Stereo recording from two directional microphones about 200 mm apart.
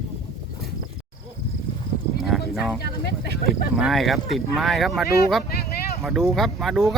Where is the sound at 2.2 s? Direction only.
Centre (ahead or behind).